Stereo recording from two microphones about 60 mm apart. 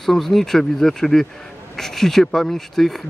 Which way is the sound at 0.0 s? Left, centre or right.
Centre.